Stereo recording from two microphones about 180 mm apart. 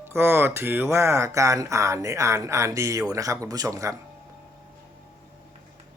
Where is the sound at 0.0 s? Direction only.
15° right (ahead or behind).